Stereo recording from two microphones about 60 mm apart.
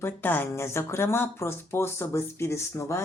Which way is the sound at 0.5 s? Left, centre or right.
Left.